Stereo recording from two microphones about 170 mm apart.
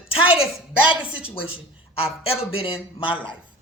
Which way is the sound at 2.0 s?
35° left (ahead or behind).